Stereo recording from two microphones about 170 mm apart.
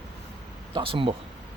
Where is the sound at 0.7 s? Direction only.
30° right (ahead or behind).